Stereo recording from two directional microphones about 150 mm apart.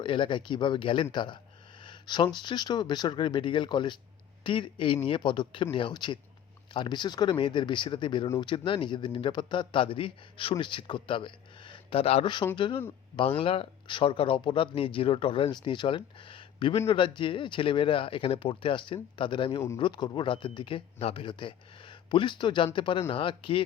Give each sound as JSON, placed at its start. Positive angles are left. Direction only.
{"t": 0.0, "sound": "speech", "side_deg": 35}